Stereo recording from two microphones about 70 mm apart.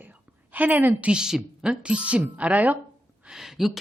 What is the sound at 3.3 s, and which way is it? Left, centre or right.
Speech, centre.